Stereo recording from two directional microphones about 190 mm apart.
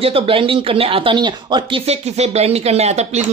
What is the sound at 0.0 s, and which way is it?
Speech, 30° right (ahead or behind).